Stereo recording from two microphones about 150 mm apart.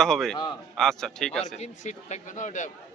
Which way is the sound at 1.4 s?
50° left (ahead or behind).